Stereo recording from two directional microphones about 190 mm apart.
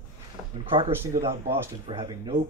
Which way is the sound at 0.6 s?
30° right (ahead or behind).